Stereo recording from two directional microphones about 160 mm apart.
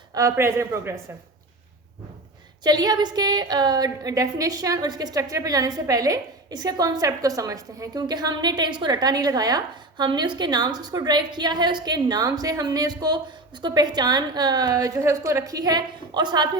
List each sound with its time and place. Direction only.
0.1 s speech: 20° right (ahead or behind)
2.6 s a woman's voice: 25° right (ahead or behind)